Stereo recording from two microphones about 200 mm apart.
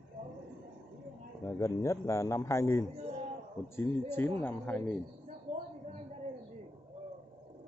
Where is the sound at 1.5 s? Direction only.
15° left (ahead or behind).